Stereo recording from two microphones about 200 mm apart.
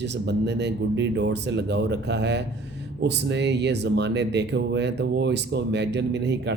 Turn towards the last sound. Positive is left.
turn(degrees=-60)  # may be behind; listen again after turning